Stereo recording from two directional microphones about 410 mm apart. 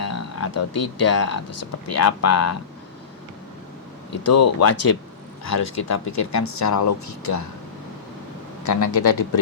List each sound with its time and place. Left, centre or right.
0.0 s speech: left
4.1 s speech: left
8.6 s speech: left